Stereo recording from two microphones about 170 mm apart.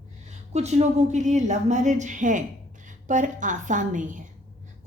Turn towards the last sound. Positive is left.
turn(degrees=-50)  # may be behind; listen again after turning